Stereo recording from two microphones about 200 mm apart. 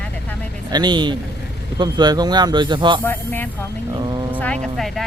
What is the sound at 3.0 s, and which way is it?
Speech, 10° left (ahead or behind).